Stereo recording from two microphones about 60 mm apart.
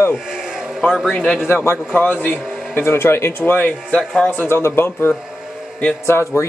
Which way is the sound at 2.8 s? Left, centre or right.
Left.